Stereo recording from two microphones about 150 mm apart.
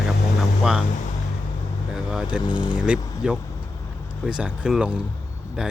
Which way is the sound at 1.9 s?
5° right (ahead or behind).